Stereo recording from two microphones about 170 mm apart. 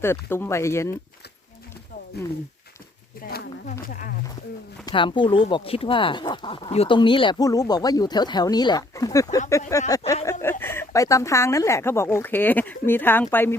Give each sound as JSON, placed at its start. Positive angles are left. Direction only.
{"t": 0.0, "sound": "speech", "side_deg": 15}
{"t": 3.2, "sound": "speech", "side_deg": 65}
{"t": 3.7, "sound": "speech", "side_deg": 55}
{"t": 4.9, "sound": "speech", "side_deg": 30}